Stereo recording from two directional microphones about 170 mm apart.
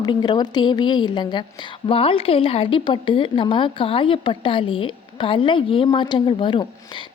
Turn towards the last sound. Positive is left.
turn(degrees=30)  # may be behind; listen again after turning